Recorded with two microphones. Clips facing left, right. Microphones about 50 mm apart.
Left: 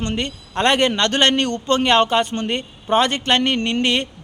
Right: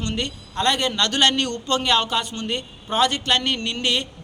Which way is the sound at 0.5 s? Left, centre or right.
Left.